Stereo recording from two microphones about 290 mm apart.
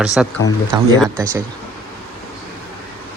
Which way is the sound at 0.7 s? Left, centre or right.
Centre.